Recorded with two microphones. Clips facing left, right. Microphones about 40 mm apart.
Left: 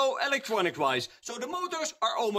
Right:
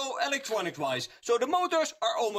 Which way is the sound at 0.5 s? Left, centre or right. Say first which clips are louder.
Left 6 dB; left.